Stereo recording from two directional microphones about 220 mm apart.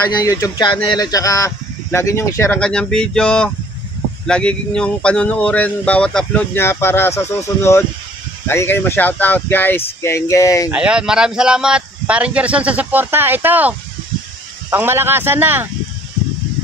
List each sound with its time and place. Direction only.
0.2 s speech: 15° left (ahead or behind)
10.7 s speech: 5° right (ahead or behind)